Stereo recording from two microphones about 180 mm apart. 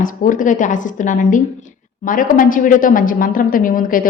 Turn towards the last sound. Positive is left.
turn(degrees=50)  # may be behind; listen again after turning